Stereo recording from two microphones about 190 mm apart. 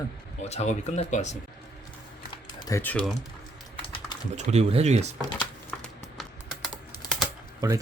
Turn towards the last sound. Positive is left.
turn(degrees=-20)  # may be behind; listen again after turning